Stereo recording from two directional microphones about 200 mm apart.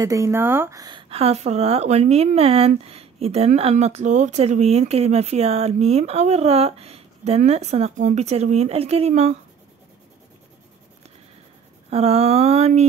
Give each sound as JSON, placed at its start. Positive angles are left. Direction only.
{"t": 0.0, "sound": "a woman's voice", "side_deg": -15}
{"t": 11.9, "sound": "a woman's voice", "side_deg": -30}